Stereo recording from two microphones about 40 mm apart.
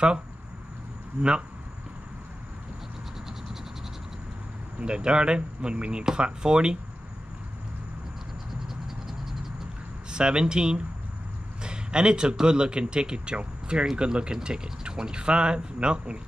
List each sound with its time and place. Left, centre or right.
1.1 s speech: centre
4.7 s speech: right
8.6 s mechanisms: centre
10.1 s speech: right